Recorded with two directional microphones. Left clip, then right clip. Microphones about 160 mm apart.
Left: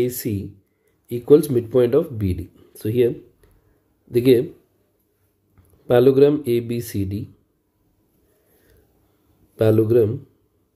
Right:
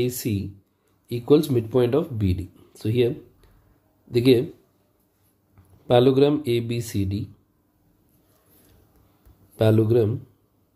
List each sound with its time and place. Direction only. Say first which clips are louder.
0.0 s speech: left 3 dB; 20° left (ahead or behind)
5.9 s speech: left 4 dB; 20° left (ahead or behind)
9.6 s speech: left 4 dB; 25° left (ahead or behind)